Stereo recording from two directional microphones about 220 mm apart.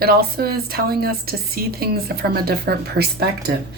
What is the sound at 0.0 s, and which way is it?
A woman's voice, 45° right (ahead or behind).